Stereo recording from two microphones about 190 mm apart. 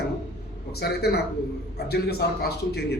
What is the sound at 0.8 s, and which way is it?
Speech, 60° left (ahead or behind).